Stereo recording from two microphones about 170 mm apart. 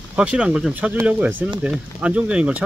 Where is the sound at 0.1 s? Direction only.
5° right (ahead or behind).